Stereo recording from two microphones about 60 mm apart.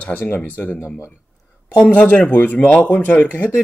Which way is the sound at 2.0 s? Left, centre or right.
Left.